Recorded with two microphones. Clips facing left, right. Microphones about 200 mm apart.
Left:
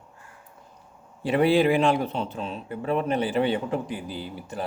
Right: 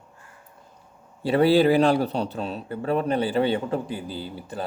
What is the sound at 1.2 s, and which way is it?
Speech, 35° right (ahead or behind).